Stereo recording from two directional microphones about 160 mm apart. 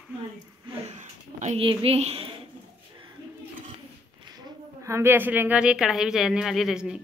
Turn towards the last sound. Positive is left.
turn(degrees=-5)  # may be behind; listen again after turning